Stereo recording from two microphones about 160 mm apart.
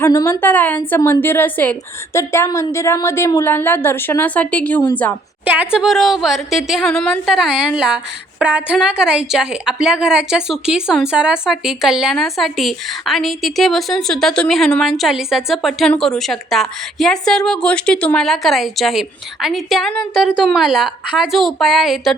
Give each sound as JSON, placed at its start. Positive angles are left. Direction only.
{"t": 0.0, "sound": "a woman's voice", "side_deg": 20}
{"t": 5.5, "sound": "a woman's voice", "side_deg": -5}